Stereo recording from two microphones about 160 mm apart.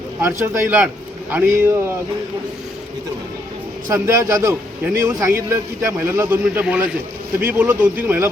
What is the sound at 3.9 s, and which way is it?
A man's voice, 20° right (ahead or behind).